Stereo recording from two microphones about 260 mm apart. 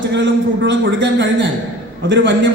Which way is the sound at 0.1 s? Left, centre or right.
Right.